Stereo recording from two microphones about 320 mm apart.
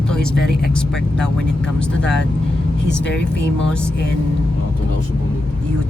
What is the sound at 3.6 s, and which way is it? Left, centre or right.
Speech, centre.